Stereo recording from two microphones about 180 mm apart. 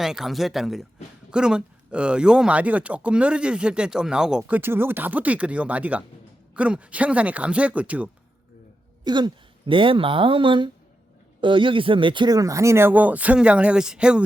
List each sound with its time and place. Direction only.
0.0 s speech: centre (ahead or behind)
9.0 s speech: 25° right (ahead or behind); by 14.3 s 5° right (ahead or behind)